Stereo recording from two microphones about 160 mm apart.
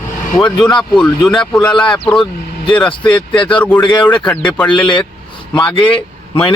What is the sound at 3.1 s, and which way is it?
Speech, 30° left (ahead or behind).